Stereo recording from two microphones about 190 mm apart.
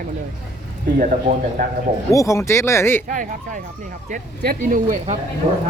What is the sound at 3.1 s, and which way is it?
Speech, 45° right (ahead or behind).